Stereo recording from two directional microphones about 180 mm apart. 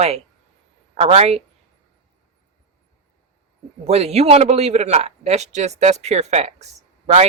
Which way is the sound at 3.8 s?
35° right (ahead or behind).